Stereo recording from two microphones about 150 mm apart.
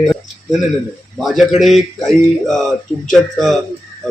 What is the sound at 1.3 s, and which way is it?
Speech, centre (ahead or behind).